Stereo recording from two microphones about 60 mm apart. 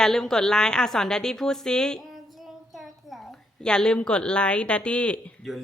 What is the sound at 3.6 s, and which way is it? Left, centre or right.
A woman's voice, centre.